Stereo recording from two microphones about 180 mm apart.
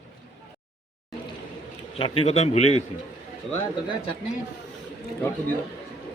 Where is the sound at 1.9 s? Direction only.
30° left (ahead or behind).